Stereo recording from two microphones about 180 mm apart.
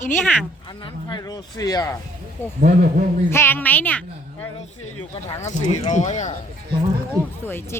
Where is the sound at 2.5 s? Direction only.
55° right (ahead or behind).